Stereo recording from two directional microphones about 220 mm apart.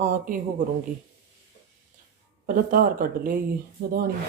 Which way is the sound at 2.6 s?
40° right (ahead or behind).